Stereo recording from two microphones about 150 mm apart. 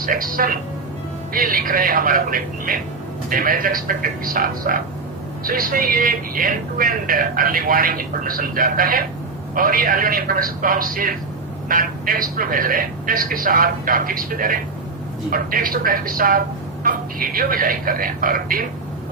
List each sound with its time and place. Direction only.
0.0 s speech: 70° right (ahead or behind)